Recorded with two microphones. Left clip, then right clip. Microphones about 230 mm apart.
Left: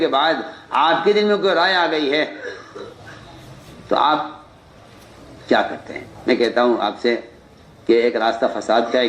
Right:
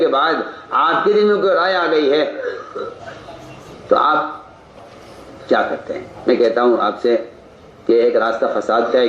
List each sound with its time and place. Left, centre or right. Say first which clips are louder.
0.0 s a man's voice: right 2 dB; left
3.8 s speech: right 3 dB; left
5.5 s a man's voice: right 2 dB; left